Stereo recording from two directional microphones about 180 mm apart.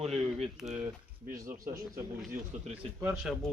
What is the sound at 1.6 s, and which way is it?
Speech, 20° right (ahead or behind).